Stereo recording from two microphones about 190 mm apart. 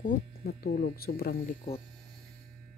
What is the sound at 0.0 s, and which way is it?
Speech, 50° left (ahead or behind).